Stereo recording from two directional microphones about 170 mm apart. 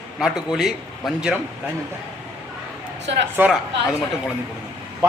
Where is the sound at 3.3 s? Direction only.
10° right (ahead or behind).